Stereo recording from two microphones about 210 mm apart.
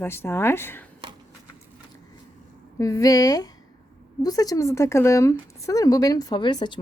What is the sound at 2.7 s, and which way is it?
Speech, 15° left (ahead or behind).